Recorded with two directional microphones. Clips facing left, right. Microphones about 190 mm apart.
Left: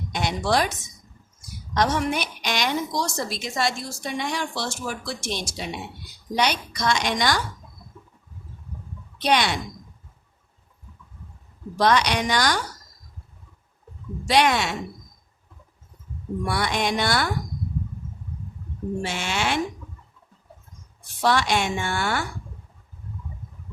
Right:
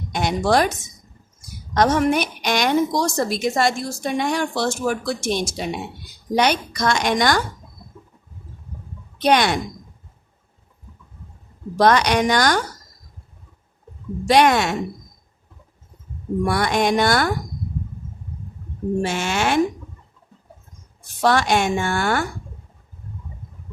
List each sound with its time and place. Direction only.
0.1 s a woman's voice: 50° right (ahead or behind)
9.2 s a woman's voice: 50° right (ahead or behind)
11.8 s a woman's voice: 50° right (ahead or behind)
14.3 s a woman's voice: 50° right (ahead or behind)
16.4 s a woman's voice: 45° right (ahead or behind)
19.0 s a woman's voice: 45° right (ahead or behind)
21.2 s a woman's voice: 50° right (ahead or behind)